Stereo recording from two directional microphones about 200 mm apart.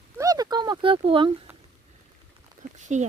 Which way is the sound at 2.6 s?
40° right (ahead or behind).